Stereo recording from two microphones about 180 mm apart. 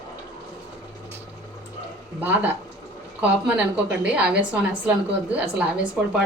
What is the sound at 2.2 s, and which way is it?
A woman's voice, 10° right (ahead or behind).